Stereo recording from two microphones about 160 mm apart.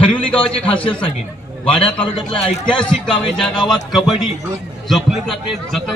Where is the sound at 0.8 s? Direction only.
30° left (ahead or behind).